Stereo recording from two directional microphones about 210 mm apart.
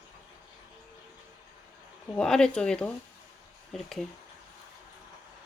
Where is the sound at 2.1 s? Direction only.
5° left (ahead or behind).